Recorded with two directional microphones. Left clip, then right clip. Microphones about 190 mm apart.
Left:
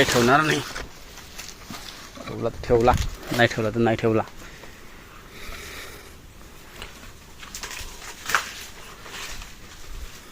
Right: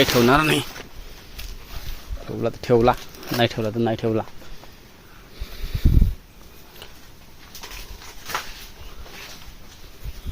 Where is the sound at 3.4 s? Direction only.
10° right (ahead or behind).